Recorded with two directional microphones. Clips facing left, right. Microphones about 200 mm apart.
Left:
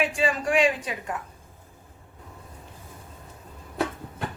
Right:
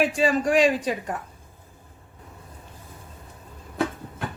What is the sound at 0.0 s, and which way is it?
A woman's voice, 40° right (ahead or behind).